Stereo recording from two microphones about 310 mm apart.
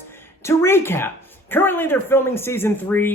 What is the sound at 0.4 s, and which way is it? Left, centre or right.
Speech, centre.